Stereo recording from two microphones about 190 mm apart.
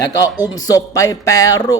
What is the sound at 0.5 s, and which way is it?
A woman's voice, 20° left (ahead or behind).